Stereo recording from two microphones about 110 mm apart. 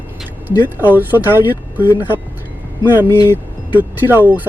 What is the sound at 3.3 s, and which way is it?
Speech, 15° right (ahead or behind).